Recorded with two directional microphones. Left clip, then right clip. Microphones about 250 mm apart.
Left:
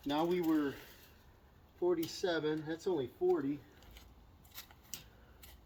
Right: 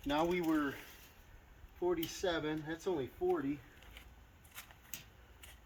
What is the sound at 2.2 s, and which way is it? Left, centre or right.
Speech, centre.